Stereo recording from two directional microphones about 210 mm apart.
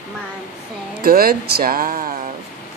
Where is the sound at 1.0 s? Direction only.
45° right (ahead or behind).